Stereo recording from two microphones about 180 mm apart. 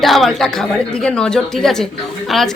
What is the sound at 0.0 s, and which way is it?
Speech, centre (ahead or behind).